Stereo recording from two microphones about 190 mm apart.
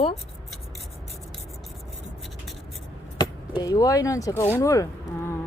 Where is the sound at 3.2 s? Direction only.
20° left (ahead or behind).